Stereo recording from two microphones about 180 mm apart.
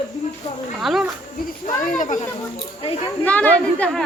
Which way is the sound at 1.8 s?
45° left (ahead or behind).